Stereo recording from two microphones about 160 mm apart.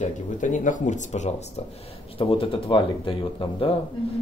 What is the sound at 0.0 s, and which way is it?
Speech, 55° left (ahead or behind).